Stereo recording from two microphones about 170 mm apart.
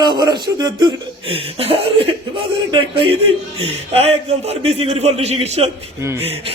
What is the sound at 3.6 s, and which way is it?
A man's voice, 35° right (ahead or behind).